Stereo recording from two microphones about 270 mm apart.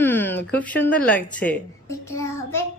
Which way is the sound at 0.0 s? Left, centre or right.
Centre.